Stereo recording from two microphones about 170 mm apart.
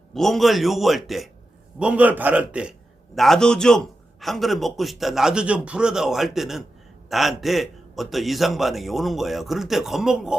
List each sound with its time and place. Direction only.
0.1 s a man's voice: centre (ahead or behind)